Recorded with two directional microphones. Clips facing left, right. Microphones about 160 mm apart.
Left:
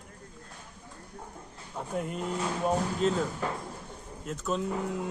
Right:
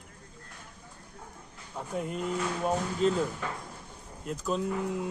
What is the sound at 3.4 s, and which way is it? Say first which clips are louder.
Speech: left 4 dB; 35° left (ahead or behind).